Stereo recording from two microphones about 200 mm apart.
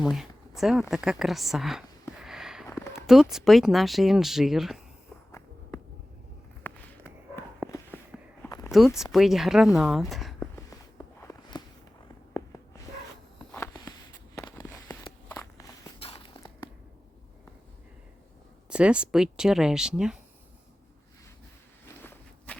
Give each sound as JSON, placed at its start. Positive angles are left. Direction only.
{"t": 0.0, "sound": "speech", "side_deg": 0}
{"t": 2.6, "sound": "a sound", "side_deg": 15}
{"t": 3.1, "sound": "speech", "side_deg": 0}
{"t": 6.6, "sound": "walk", "side_deg": 10}
{"t": 8.1, "sound": "walk", "side_deg": 0}
{"t": 8.4, "sound": "a sound", "side_deg": 20}
{"t": 9.1, "sound": "speech", "side_deg": 0}
{"t": 10.5, "sound": "walk", "side_deg": 15}
{"t": 13.5, "sound": "a sound", "side_deg": 10}
{"t": 14.3, "sound": "fireworks", "side_deg": 10}
{"t": 15.0, "sound": "walk", "side_deg": 15}
{"t": 16.0, "sound": "a sound", "side_deg": 30}
{"t": 18.7, "sound": "speech", "side_deg": -5}
{"t": 22.0, "sound": "walk", "side_deg": 10}